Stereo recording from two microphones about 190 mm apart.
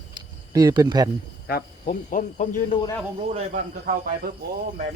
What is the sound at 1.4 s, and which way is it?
Speech, 55° left (ahead or behind).